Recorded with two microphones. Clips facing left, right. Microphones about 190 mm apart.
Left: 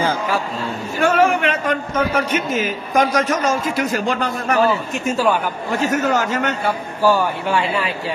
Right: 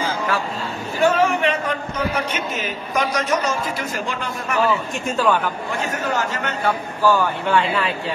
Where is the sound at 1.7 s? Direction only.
50° left (ahead or behind).